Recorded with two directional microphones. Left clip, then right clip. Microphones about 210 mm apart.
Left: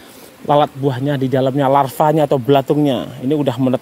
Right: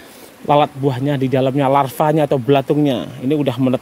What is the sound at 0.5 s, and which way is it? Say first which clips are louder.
Speech: even; centre (ahead or behind).